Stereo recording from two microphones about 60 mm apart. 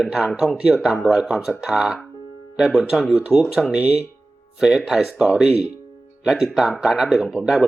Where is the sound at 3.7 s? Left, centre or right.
Centre.